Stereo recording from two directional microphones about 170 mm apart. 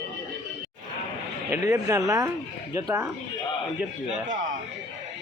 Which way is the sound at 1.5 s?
20° right (ahead or behind).